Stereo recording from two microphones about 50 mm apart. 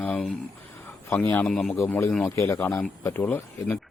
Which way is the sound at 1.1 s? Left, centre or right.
Left.